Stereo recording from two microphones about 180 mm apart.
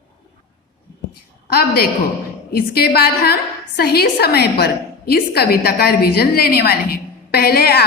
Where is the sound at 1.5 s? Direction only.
60° left (ahead or behind).